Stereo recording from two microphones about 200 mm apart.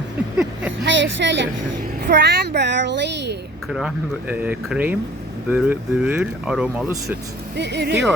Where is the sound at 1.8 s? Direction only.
45° right (ahead or behind).